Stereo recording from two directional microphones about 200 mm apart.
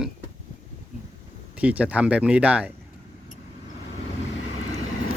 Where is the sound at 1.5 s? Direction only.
5° right (ahead or behind).